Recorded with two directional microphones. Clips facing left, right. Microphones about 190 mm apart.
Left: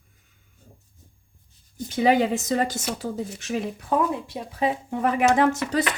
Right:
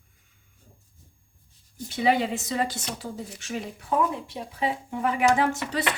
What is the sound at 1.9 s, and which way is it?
Speech, 40° left (ahead or behind).